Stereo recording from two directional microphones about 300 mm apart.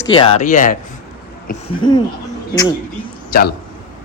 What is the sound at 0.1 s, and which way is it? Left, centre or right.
Speech, centre.